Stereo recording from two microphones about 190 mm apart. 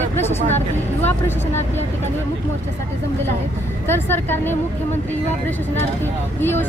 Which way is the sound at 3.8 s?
10° left (ahead or behind).